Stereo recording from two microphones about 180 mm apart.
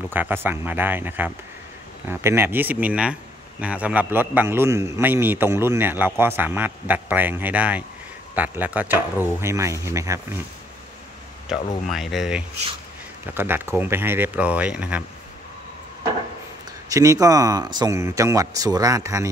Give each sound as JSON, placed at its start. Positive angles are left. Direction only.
{"t": 0.1, "sound": "a man's voice", "side_deg": -10}
{"t": 11.5, "sound": "a man's voice", "side_deg": -5}
{"t": 16.9, "sound": "speech", "side_deg": -20}